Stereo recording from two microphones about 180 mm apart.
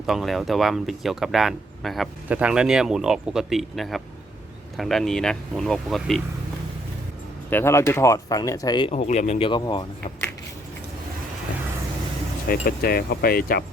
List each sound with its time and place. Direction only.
0.0 s speech: centre (ahead or behind)
7.5 s speech: 15° left (ahead or behind)
12.5 s speech: 55° left (ahead or behind)